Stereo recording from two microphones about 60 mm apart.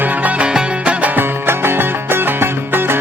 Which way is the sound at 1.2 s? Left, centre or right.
Right.